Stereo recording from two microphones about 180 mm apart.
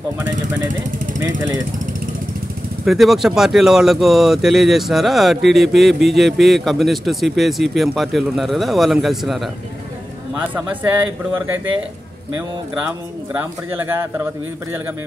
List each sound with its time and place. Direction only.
1.2 s speech: 20° right (ahead or behind)
2.8 s speech: centre (ahead or behind)
11.3 s speech: 10° right (ahead or behind)
13.3 s speech: 10° right (ahead or behind)